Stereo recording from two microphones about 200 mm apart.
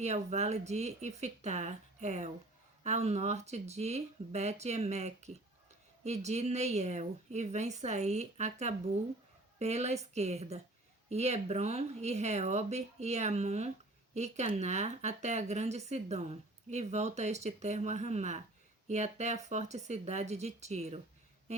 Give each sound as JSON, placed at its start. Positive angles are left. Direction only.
{"t": 0.0, "sound": "speech", "side_deg": -35}